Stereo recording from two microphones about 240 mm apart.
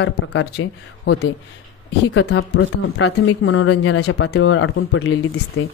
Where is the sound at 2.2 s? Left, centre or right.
Left.